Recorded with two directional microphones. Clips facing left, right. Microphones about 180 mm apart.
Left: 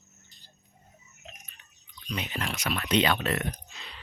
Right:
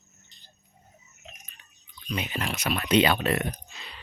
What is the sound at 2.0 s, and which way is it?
Speech, 5° right (ahead or behind).